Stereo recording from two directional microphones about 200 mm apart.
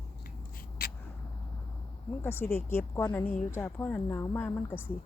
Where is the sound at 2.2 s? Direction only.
10° left (ahead or behind).